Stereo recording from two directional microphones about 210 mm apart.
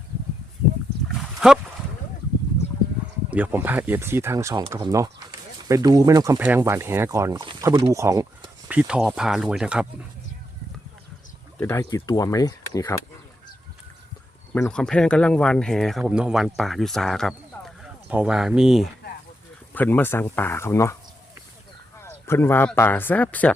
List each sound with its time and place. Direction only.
1.0 s a sound: 5° right (ahead or behind)
3.2 s speech: 5° right (ahead or behind)
8.6 s speech: 5° right (ahead or behind)
11.5 s speech: 10° left (ahead or behind)
14.5 s speech: 5° left (ahead or behind)
19.7 s speech: 10° left (ahead or behind)
21.9 s speech: 10° left (ahead or behind)